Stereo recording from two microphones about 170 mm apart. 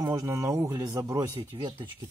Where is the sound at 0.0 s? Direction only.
20° right (ahead or behind).